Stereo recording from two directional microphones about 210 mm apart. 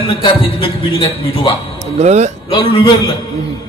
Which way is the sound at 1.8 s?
30° right (ahead or behind).